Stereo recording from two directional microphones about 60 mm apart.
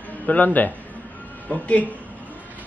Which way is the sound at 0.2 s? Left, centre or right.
Left.